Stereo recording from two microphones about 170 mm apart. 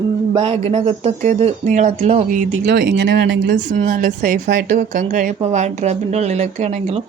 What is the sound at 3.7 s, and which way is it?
Speech, 50° right (ahead or behind).